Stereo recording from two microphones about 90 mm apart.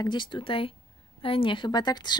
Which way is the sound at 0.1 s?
65° left (ahead or behind).